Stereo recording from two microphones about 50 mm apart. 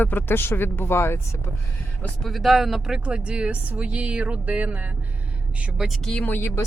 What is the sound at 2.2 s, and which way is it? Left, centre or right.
Speech, centre.